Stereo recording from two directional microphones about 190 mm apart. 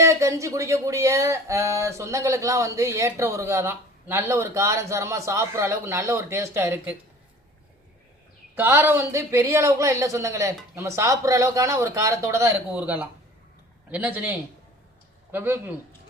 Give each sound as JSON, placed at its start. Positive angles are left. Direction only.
{"t": 0.0, "sound": "speech", "side_deg": -15}
{"t": 8.5, "sound": "speech", "side_deg": -10}